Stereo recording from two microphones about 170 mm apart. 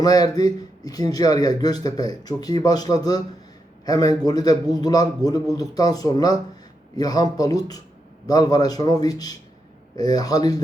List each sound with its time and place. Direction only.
0.0 s a man's voice: 20° left (ahead or behind)